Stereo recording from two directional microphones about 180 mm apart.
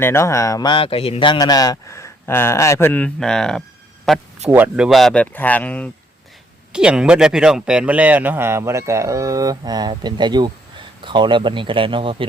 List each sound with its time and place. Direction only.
0.0 s a man's voice: 15° left (ahead or behind)
4.4 s a man's voice: 10° right (ahead or behind); by 5.9 s 5° left (ahead or behind)
6.7 s a man's voice: 5° right (ahead or behind); by 12.1 s 30° right (ahead or behind)